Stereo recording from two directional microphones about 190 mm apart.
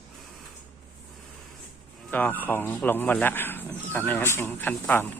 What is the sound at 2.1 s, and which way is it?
Speech, 10° left (ahead or behind).